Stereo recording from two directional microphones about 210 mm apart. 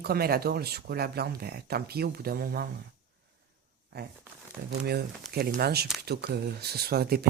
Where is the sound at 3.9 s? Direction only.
50° right (ahead or behind).